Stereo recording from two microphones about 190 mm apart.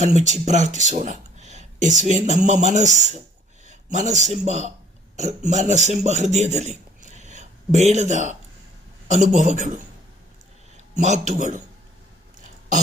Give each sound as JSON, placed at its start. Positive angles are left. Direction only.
{"t": 0.0, "sound": "a man's voice", "side_deg": -40}
{"t": 10.9, "sound": "speech", "side_deg": -35}
{"t": 12.4, "sound": "a sound", "side_deg": -40}